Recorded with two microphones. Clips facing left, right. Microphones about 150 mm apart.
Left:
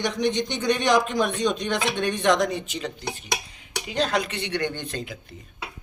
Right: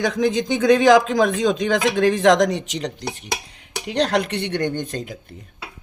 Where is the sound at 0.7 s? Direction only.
90° right; by 5.1 s 45° right (ahead or behind).